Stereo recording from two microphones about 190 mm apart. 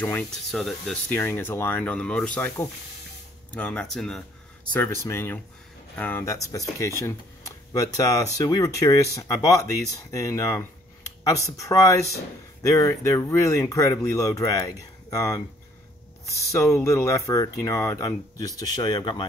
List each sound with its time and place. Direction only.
0.0 s speech: 5° left (ahead or behind)
4.7 s speech: 15° left (ahead or behind)